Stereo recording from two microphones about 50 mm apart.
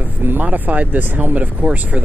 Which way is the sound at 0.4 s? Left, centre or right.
Right.